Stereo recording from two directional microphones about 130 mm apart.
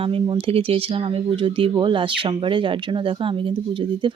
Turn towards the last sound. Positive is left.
turn(degrees=-40)  # may be behind; listen again after turning